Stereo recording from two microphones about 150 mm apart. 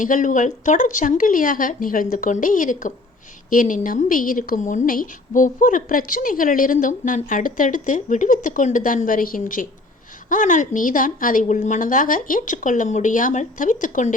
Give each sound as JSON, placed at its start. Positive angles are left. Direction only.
{"t": 0.0, "sound": "a woman's voice", "side_deg": 60}